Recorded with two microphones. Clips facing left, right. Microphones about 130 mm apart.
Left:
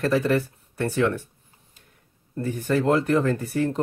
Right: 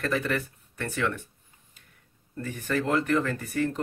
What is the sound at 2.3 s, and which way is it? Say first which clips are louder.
Speech: left 6 dB; 30° left (ahead or behind).